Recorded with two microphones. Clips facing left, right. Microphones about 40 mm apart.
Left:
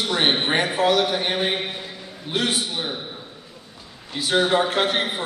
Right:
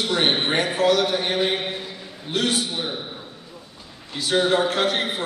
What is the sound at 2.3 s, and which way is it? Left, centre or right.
Speech, left.